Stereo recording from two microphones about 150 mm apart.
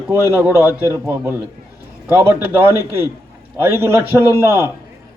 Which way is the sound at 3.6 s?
15° right (ahead or behind).